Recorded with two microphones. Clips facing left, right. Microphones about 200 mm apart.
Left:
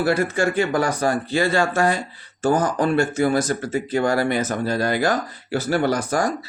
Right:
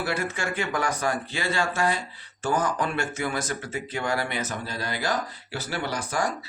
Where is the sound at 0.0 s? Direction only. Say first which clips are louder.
Left 9 dB; 40° left (ahead or behind).